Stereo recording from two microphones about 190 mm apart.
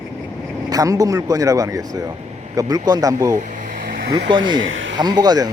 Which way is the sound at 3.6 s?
45° right (ahead or behind).